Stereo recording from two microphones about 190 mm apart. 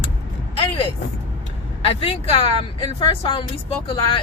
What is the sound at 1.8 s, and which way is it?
A woman's voice, 30° left (ahead or behind).